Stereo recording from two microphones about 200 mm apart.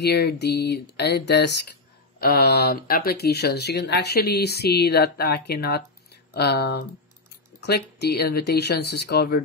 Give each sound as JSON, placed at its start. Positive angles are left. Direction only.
{"t": 0.0, "sound": "speech", "side_deg": 55}